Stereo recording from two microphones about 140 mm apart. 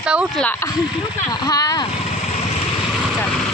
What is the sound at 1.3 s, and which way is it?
Speech, 30° left (ahead or behind).